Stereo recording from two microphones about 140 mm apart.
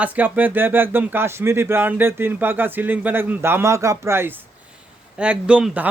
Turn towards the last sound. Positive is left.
turn(degrees=-10)  # may be behind; listen again after turning